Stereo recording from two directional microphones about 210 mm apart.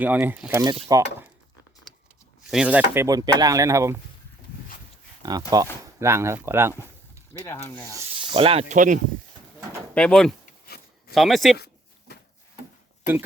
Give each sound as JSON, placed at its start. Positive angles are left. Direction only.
{"t": 0.0, "sound": "speech", "side_deg": -10}
{"t": 0.6, "sound": "speech", "side_deg": -20}
{"t": 2.5, "sound": "speech", "side_deg": -5}
{"t": 5.5, "sound": "speech", "side_deg": -20}
{"t": 7.3, "sound": "speech", "side_deg": 15}
{"t": 7.9, "sound": "speech", "side_deg": -25}
{"t": 9.9, "sound": "speech", "side_deg": 5}
{"t": 11.5, "sound": "a sound", "side_deg": 50}